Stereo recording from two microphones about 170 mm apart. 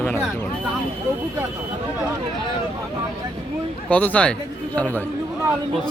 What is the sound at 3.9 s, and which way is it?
Speech, 10° left (ahead or behind).